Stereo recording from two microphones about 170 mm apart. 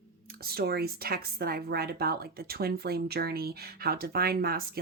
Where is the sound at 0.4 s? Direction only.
70° right (ahead or behind).